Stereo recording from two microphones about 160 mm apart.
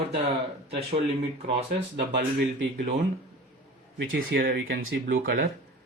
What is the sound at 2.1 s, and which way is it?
Speech, 90° right.